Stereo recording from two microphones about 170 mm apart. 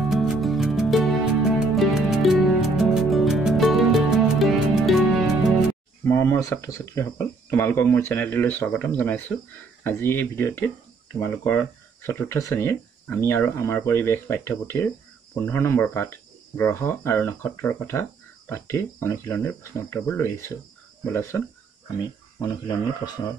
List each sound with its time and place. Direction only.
0.0 s music: centre (ahead or behind)
6.0 s speech: 15° left (ahead or behind)